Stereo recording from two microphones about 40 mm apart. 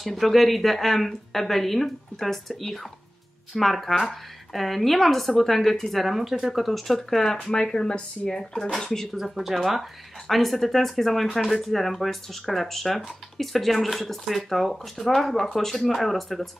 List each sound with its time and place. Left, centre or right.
0.1 s speech: centre
7.7 s speech: left
9.1 s speech: centre